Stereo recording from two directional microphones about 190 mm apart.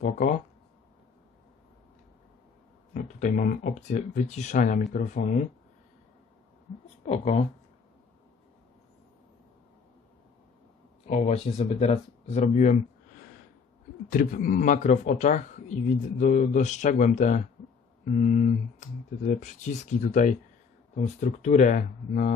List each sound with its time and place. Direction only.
0.0 s speech: 40° left (ahead or behind)
2.9 s speech: 40° left (ahead or behind)
7.1 s speech: 35° left (ahead or behind)
11.1 s speech: 35° left (ahead or behind)
14.1 s a man's voice: 45° left (ahead or behind)